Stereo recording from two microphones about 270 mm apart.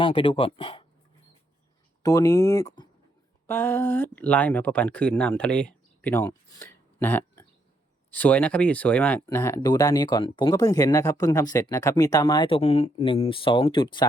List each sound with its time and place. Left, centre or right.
0.0 s speech: centre
2.0 s speech: centre